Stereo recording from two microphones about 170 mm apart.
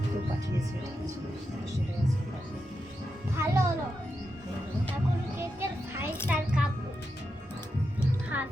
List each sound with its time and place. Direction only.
3.3 s music: 15° right (ahead or behind)
5.4 s music: 15° right (ahead or behind)
8.3 s music: 10° right (ahead or behind)